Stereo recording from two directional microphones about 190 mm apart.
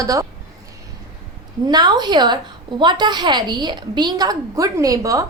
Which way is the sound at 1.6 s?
20° right (ahead or behind).